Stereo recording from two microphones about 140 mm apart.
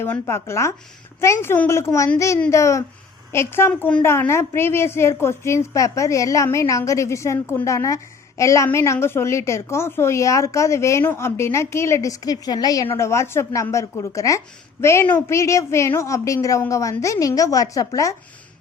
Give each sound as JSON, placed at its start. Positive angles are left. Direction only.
{"t": 0.0, "sound": "a woman's voice", "side_deg": 15}